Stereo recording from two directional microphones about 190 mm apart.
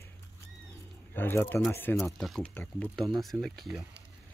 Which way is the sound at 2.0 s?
Centre (ahead or behind).